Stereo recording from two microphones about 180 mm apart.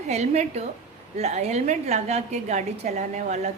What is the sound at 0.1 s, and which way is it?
A woman's voice, 40° right (ahead or behind).